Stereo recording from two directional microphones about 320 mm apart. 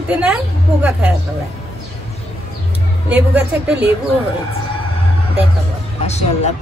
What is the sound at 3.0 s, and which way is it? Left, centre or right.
Speech, centre.